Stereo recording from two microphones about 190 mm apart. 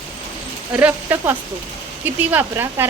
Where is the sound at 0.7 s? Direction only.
10° right (ahead or behind).